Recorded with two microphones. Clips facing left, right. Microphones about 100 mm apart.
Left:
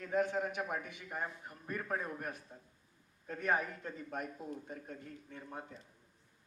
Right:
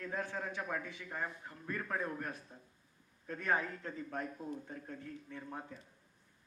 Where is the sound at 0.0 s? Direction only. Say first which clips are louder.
Left 6 dB; 20° left (ahead or behind).